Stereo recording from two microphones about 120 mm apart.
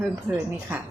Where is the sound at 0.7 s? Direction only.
15° right (ahead or behind).